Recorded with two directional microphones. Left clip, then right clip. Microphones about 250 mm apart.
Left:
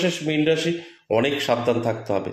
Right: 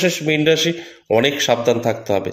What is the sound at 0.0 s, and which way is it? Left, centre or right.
A man's voice, right.